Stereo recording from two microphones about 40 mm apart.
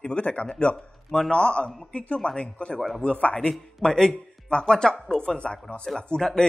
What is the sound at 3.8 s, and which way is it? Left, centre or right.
Speech, centre.